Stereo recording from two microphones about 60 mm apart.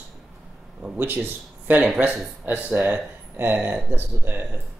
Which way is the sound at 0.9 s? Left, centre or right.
Right.